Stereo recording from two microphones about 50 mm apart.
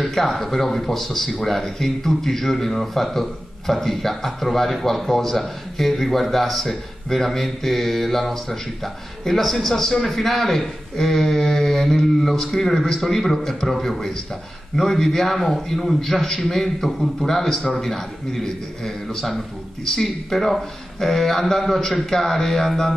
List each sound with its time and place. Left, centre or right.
0.0 s speech: centre